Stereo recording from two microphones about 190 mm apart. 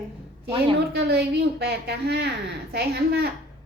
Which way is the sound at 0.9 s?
60° right (ahead or behind).